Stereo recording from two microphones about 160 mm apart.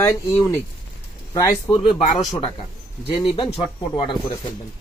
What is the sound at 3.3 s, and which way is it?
Speech, 40° left (ahead or behind).